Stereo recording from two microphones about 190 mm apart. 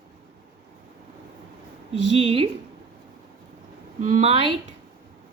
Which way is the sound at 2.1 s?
30° right (ahead or behind).